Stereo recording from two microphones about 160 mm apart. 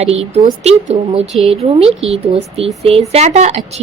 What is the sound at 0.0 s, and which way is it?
A woman's voice, 40° right (ahead or behind).